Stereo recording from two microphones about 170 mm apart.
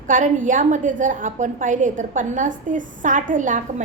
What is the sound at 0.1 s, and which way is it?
A woman's voice, 50° right (ahead or behind).